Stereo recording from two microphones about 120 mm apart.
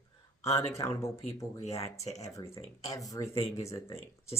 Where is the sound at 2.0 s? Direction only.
65° left (ahead or behind).